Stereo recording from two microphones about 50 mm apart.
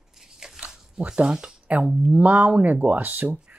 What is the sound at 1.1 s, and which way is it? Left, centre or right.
Speech, centre.